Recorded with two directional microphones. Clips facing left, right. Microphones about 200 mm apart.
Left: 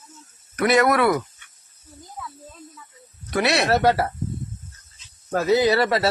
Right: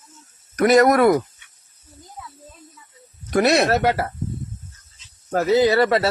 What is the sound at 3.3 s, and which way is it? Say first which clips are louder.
Speech: right 3 dB; 40° right (ahead or behind).